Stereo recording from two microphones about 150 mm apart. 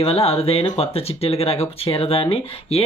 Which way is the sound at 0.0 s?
40° left (ahead or behind).